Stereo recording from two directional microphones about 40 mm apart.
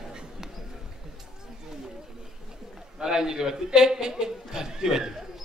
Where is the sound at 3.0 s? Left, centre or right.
Centre.